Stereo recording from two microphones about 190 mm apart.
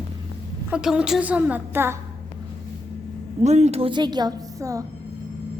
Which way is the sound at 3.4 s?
35° right (ahead or behind).